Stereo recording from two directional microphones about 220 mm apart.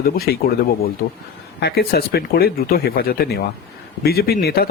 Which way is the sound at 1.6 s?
45° left (ahead or behind).